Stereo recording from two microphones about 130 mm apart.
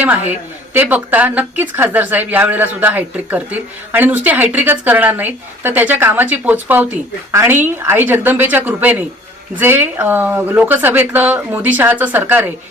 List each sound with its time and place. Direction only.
0.0 s a woman's voice: 15° right (ahead or behind)